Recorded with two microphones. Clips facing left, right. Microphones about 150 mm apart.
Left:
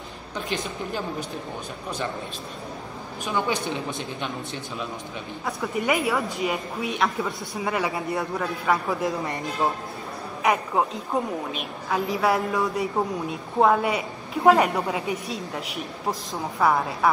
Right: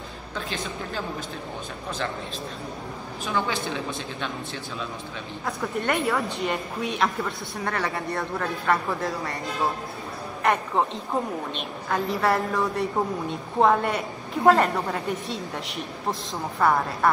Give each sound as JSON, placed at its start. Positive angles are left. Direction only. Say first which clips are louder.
{"t": 3.3, "sound": "speech", "louder": "left 1 dB", "side_deg": 15}
{"t": 5.4, "sound": "a woman's voice", "louder": "left 1 dB", "side_deg": 5}
{"t": 10.4, "sound": "a woman's voice", "louder": "even", "side_deg": 5}